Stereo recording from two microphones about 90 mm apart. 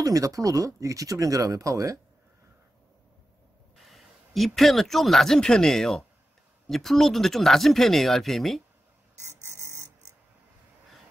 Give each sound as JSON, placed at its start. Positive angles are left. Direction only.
{"t": 0.0, "sound": "speech", "side_deg": -40}
{"t": 3.7, "sound": "speech", "side_deg": 0}
{"t": 9.6, "sound": "music", "side_deg": -30}